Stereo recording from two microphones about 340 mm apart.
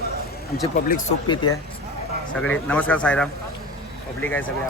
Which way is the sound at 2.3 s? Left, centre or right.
Centre.